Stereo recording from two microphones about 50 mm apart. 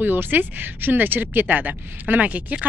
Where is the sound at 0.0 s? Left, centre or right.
Right.